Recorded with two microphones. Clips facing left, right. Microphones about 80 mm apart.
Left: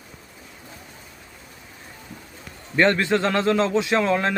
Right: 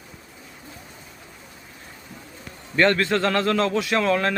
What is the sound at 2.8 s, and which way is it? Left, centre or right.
Speech, left.